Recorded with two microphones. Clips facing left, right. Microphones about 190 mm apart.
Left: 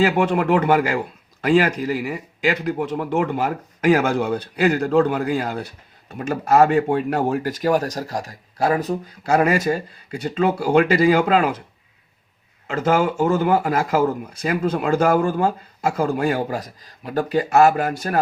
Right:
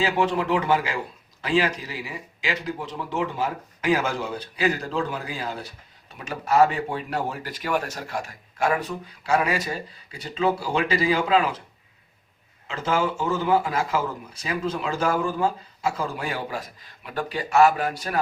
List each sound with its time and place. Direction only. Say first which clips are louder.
0.0 s speech: left 5 dB; 55° left (ahead or behind)
12.6 s speech: left 6 dB; 50° left (ahead or behind)